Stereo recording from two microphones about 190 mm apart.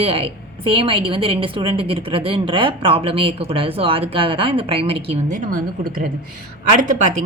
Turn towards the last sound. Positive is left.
turn(degrees=-40)  # may be behind; listen again after turning